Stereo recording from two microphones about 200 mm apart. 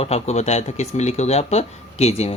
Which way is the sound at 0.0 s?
30° left (ahead or behind).